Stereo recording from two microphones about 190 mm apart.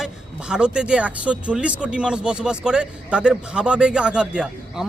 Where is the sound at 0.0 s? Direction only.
5° right (ahead or behind).